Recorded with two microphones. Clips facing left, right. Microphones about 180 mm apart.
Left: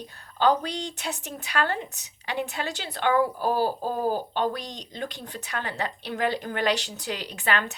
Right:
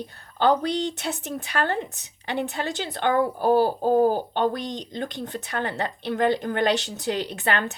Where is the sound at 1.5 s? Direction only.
40° right (ahead or behind).